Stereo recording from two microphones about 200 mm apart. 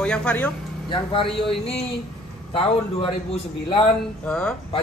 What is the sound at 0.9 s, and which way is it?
Speech, 25° left (ahead or behind).